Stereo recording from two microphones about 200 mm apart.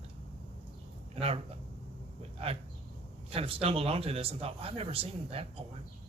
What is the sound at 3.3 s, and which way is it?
Speech, 30° right (ahead or behind).